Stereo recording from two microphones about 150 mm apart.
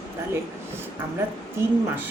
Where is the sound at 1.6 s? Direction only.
20° right (ahead or behind).